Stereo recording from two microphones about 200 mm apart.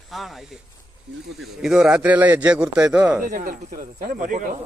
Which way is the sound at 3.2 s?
40° right (ahead or behind).